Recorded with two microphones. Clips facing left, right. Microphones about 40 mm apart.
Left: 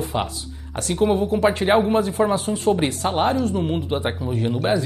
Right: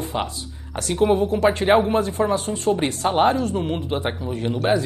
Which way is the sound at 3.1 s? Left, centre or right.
Centre.